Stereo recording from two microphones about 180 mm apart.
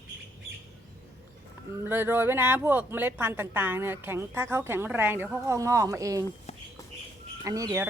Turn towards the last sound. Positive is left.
turn(degrees=-15)  # may be behind; listen again after turning